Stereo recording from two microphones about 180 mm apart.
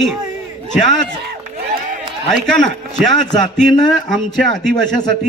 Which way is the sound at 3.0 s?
Centre (ahead or behind).